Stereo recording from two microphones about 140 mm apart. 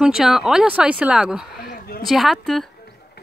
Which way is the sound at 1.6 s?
90° left.